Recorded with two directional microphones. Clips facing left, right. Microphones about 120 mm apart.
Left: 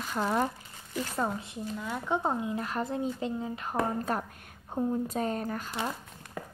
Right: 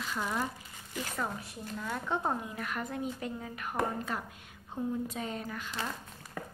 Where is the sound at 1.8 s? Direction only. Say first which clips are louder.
Left 2 dB; 15° left (ahead or behind).